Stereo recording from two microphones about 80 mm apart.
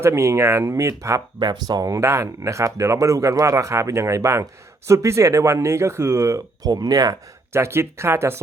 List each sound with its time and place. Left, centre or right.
0.0 s speech: right
1.4 s speech: right
1.9 s speech: right
7.5 s speech: right